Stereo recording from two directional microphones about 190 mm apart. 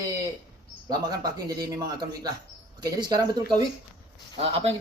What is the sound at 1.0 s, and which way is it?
Speech, 20° right (ahead or behind).